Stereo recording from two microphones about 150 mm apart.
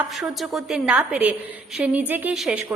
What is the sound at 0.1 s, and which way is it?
A woman's voice, centre (ahead or behind).